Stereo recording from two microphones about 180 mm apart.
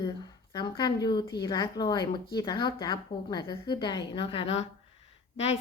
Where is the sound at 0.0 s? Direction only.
25° left (ahead or behind).